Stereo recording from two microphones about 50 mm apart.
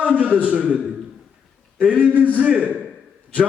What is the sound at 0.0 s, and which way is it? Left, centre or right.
A man's voice, right.